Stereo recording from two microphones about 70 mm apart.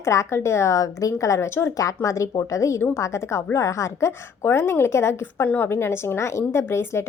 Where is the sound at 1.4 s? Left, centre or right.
Left.